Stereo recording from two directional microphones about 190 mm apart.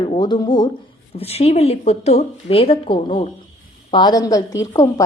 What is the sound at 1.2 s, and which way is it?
A woman's voice, 30° left (ahead or behind).